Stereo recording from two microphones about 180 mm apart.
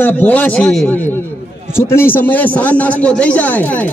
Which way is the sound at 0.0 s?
10° left (ahead or behind).